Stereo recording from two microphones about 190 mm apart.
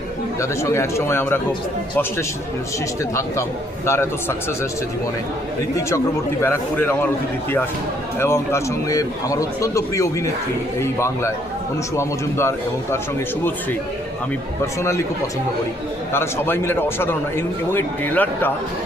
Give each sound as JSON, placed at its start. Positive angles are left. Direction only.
{"t": 0.3, "sound": "speech", "side_deg": 15}
{"t": 3.8, "sound": "speech", "side_deg": 15}
{"t": 6.4, "sound": "speech", "side_deg": 10}
{"t": 8.2, "sound": "speech", "side_deg": 15}
{"t": 14.8, "sound": "speech", "side_deg": 15}
{"t": 16.1, "sound": "speech", "side_deg": 10}